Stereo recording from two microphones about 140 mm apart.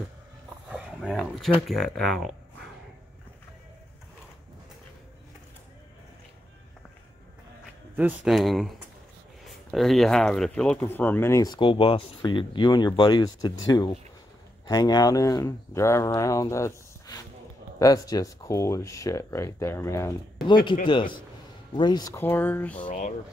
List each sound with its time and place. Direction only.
0.7 s roaring cats: 5° right (ahead or behind)
1.2 s speech: centre (ahead or behind)
7.9 s speech: 10° right (ahead or behind)
8.3 s speech: centre (ahead or behind); by 11.5 s 20° left (ahead or behind)
11.5 s speech: 35° left (ahead or behind); by 20.2 s 20° left (ahead or behind)
20.8 s speech: 35° left (ahead or behind)
22.1 s speech: 15° left (ahead or behind)
22.8 s speech: 65° left (ahead or behind)